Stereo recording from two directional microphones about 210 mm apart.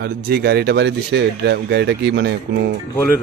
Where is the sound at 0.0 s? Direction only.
45° right (ahead or behind).